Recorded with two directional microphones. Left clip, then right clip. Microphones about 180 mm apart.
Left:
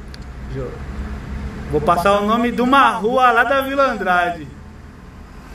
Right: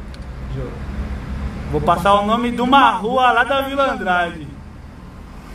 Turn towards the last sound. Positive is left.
turn(degrees=5)  # may be behind; listen again after turning